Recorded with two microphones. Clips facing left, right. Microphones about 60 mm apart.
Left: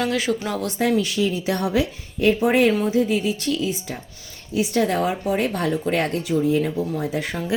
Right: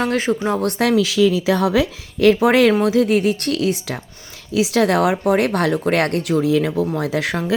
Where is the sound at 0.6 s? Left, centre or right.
Right.